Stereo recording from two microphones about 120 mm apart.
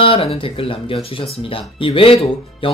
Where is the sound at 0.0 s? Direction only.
50° left (ahead or behind).